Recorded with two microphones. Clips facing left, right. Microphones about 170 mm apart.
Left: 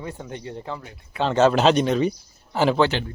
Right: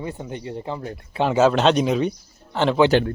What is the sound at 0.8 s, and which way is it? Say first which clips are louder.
Speech: right 9 dB; 35° right (ahead or behind).